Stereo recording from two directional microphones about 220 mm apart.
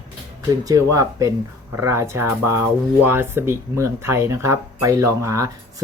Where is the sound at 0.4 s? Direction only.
15° right (ahead or behind).